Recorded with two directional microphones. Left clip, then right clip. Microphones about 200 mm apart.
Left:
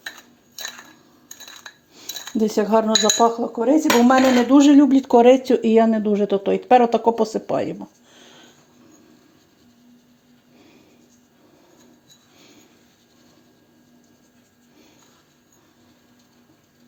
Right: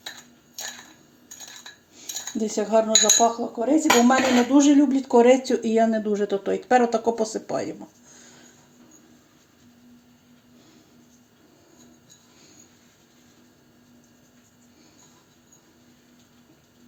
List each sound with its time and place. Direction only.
2.0 s cutlery: 50° left (ahead or behind)